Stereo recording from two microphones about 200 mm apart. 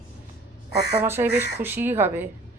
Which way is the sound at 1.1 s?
10° right (ahead or behind).